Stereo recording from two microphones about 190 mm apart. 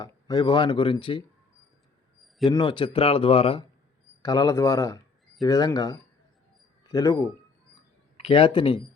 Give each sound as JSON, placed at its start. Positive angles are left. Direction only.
{"t": 0.0, "sound": "speech", "side_deg": 20}
{"t": 2.5, "sound": "speech", "side_deg": 25}
{"t": 8.1, "sound": "speech", "side_deg": 30}